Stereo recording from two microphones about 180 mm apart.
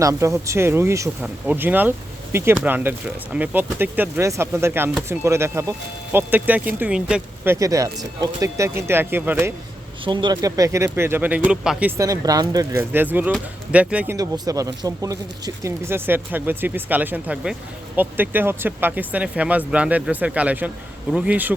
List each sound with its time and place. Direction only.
0.0 s speech: 15° right (ahead or behind)
10.0 s speech: 25° right (ahead or behind); by 14.2 s 5° right (ahead or behind)
14.2 s speech: 20° right (ahead or behind)